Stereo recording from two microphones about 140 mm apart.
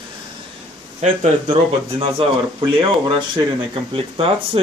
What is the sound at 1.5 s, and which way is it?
Speech, 40° right (ahead or behind).